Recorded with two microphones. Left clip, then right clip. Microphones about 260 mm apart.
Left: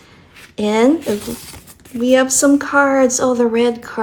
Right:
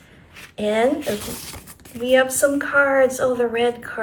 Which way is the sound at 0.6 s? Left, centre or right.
Centre.